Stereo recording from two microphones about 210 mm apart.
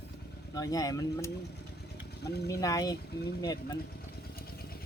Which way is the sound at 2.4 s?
15° left (ahead or behind).